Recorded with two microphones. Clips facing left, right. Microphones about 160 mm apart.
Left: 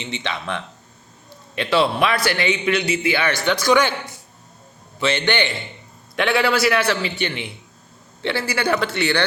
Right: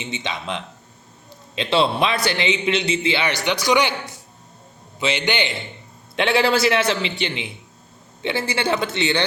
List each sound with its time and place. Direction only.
0.0 s a man's voice: 20° right (ahead or behind)
4.9 s a man's voice: 15° right (ahead or behind)